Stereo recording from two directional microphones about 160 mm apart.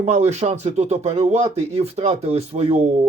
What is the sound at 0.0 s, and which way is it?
Speech, 45° right (ahead or behind).